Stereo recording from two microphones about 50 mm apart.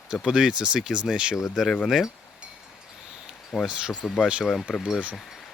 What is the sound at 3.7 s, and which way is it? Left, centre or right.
Speech, centre.